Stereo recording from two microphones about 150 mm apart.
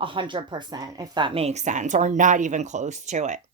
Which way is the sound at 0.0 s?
35° right (ahead or behind).